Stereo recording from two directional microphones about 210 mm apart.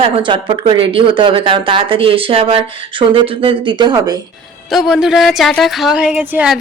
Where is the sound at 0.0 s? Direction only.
25° right (ahead or behind).